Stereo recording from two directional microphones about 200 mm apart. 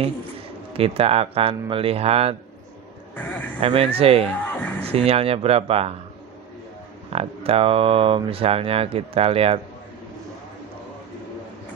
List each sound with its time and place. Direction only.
0.7 s speech: 30° right (ahead or behind)
3.2 s speech: 10° left (ahead or behind)
3.6 s speech: 30° right (ahead or behind)
4.5 s speech: 5° left (ahead or behind)
4.8 s speech: 30° right (ahead or behind)
7.1 s speech: 30° right (ahead or behind)